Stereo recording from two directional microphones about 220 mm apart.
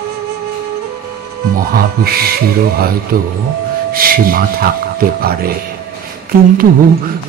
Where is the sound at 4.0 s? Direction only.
40° right (ahead or behind).